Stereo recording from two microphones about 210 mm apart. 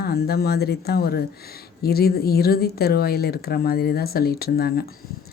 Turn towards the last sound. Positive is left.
turn(degrees=50)  # may be behind; listen again after turning